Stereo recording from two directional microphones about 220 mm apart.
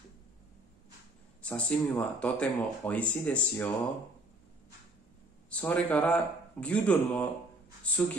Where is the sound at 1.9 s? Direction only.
5° left (ahead or behind).